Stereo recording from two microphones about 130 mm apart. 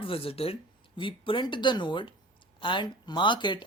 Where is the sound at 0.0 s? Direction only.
45° left (ahead or behind).